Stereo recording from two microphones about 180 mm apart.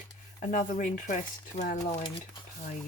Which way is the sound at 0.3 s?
45° left (ahead or behind).